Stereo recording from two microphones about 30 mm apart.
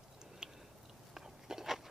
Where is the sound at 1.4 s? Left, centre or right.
Centre.